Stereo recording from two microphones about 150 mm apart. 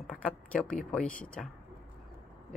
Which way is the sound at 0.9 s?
10° left (ahead or behind).